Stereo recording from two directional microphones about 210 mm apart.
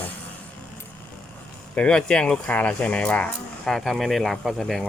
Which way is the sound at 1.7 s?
5° left (ahead or behind).